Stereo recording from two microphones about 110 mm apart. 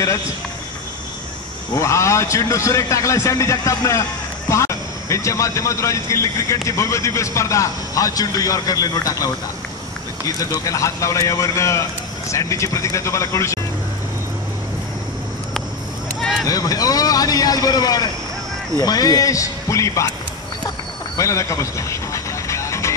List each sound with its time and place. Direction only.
1.7 s speech: 25° left (ahead or behind)
10.6 s speech: 30° left (ahead or behind)
16.2 s a sound: centre (ahead or behind)
16.4 s a man's voice: 35° left (ahead or behind)
21.2 s music: 30° left (ahead or behind)